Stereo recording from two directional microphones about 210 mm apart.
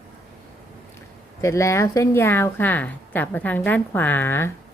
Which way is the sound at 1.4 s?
15° left (ahead or behind).